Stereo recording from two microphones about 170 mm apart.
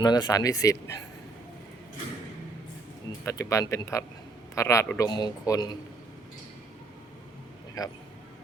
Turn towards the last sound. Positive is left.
turn(degrees=20)  # may be behind; listen again after turning